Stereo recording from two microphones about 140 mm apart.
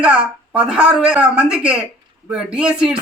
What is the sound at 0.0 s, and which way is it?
Speech, 10° right (ahead or behind).